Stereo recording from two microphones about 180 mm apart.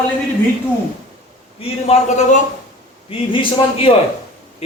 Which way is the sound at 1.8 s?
40° left (ahead or behind).